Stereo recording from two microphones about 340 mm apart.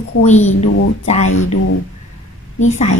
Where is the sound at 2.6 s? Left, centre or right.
Left.